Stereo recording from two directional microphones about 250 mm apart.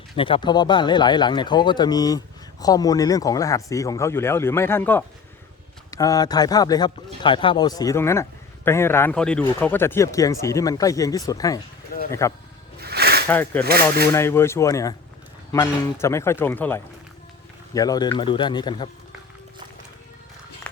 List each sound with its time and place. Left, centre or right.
0.2 s a man's voice: centre
12.8 s a sound: right
13.2 s a man's voice: centre
13.7 s speech: right
14.1 s a man's voice: centre